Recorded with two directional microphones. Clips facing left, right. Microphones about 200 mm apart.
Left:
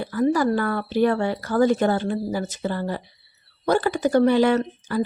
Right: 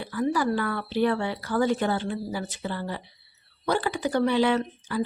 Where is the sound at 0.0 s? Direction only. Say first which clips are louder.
Left 5 dB; 45° left (ahead or behind).